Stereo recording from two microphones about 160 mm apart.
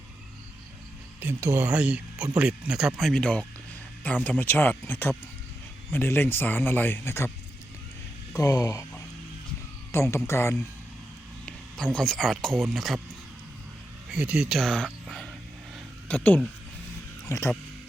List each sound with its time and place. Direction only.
1.2 s speech: 15° right (ahead or behind); by 7.3 s 15° left (ahead or behind)
8.3 s speech: 20° left (ahead or behind)
9.9 s speech: 15° left (ahead or behind)
11.4 s speech: 5° left (ahead or behind)
14.1 s speech: 5° right (ahead or behind); by 17.5 s 15° left (ahead or behind)